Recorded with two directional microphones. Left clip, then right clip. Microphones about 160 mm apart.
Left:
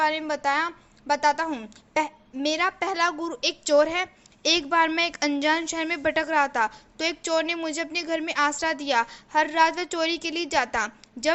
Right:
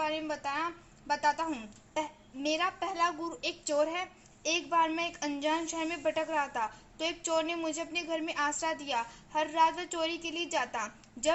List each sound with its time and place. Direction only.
0.0 s a woman's voice: 30° left (ahead or behind)